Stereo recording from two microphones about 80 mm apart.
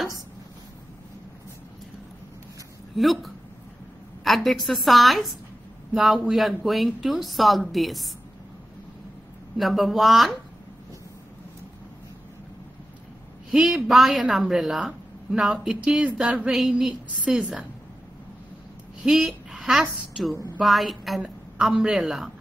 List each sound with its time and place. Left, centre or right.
3.0 s speech: centre
9.6 s speech: centre
13.5 s a woman's voice: centre
19.0 s a woman's voice: centre
20.6 s speech: centre